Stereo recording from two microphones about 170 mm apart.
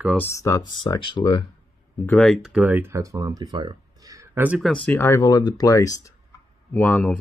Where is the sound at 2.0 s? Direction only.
5° left (ahead or behind).